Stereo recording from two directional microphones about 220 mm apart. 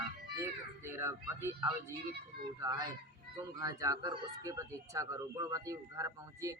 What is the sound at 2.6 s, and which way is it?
A child's voice, 20° right (ahead or behind).